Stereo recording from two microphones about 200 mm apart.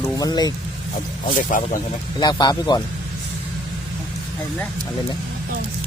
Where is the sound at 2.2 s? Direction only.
20° left (ahead or behind).